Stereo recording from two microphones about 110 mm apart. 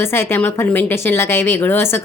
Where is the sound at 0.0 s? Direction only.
20° left (ahead or behind).